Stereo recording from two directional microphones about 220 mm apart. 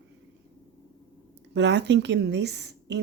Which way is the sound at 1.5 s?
50° right (ahead or behind).